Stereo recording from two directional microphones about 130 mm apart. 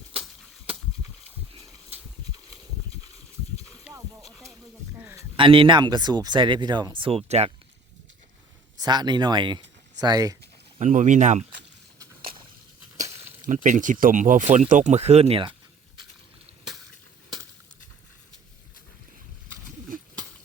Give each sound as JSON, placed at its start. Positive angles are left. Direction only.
{"t": 3.9, "sound": "a sound", "side_deg": -10}
{"t": 5.4, "sound": "speech", "side_deg": -40}
{"t": 8.8, "sound": "speech", "side_deg": -35}
{"t": 10.8, "sound": "speech", "side_deg": -65}
{"t": 13.5, "sound": "speech", "side_deg": -75}